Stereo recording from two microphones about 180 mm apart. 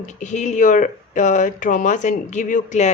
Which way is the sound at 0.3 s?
40° left (ahead or behind).